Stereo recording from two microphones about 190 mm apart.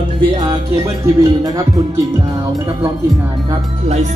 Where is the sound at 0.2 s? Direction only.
20° right (ahead or behind).